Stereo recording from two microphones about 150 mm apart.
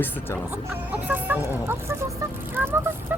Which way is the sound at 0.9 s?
10° right (ahead or behind).